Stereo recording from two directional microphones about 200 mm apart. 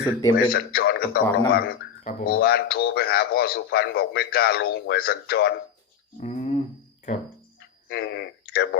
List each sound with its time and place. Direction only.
0.2 s a man's voice: 15° left (ahead or behind)
0.5 s speech: 50° left (ahead or behind)
6.1 s a sound: 35° left (ahead or behind)
7.9 s speech: 55° left (ahead or behind)